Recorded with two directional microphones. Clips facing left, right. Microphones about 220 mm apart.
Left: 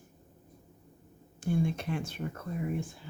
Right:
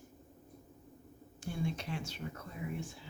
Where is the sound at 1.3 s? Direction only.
50° left (ahead or behind).